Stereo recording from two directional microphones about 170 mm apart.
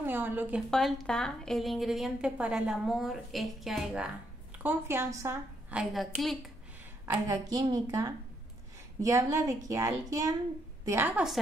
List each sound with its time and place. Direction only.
0.0 s a sound: 10° right (ahead or behind)
0.7 s a woman's voice: centre (ahead or behind)
4.6 s a woman's voice: 15° right (ahead or behind)
7.1 s a woman's voice: 25° right (ahead or behind)